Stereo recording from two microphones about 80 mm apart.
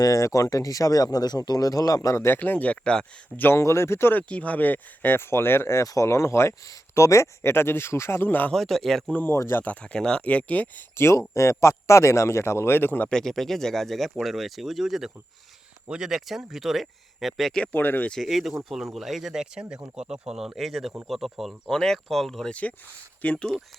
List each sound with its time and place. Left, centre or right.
0.0 s speech: left; by 3.1 s centre
3.3 s speech: left
3.6 s speech: left
4.2 s speech: centre; by 5.8 s left
5.8 s speech: left
8.5 s speech: centre
9.1 s speech: left
9.6 s speech: centre
10.9 s speech: left
13.1 s speech: centre
17.5 s speech: centre
17.7 s speech: left
18.2 s speech: centre
23.2 s speech: centre